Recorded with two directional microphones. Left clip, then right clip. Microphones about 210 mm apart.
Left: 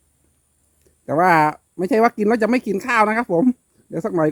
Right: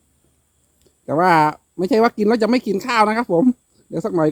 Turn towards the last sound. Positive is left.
turn(degrees=-10)  # may be behind; listen again after turning